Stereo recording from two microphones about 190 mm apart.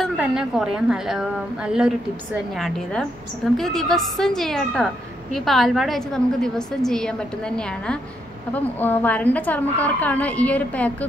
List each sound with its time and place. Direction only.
0.0 s a woman's voice: 5° right (ahead or behind)